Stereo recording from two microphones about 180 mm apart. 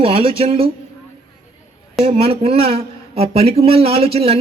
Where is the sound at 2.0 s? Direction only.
35° right (ahead or behind).